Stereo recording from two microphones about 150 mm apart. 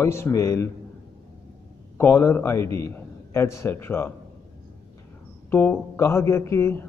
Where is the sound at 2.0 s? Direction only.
15° left (ahead or behind).